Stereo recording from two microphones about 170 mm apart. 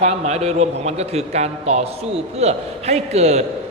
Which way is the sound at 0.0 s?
40° right (ahead or behind).